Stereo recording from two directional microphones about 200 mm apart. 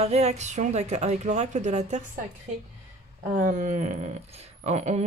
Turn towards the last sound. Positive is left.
turn(degrees=-35)  # may be behind; listen again after turning